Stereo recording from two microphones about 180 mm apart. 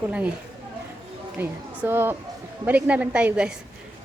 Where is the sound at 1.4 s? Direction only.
10° right (ahead or behind).